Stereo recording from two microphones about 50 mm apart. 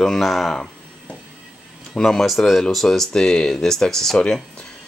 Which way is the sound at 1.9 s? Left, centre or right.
Centre.